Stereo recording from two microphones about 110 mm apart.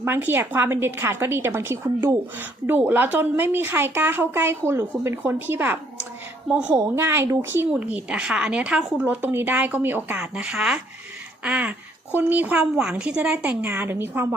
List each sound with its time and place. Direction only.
0.0 s a woman's voice: 20° right (ahead or behind)
6.7 s a woman's voice: 25° right (ahead or behind)